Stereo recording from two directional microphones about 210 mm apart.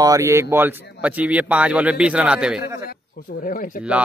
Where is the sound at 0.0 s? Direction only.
15° right (ahead or behind).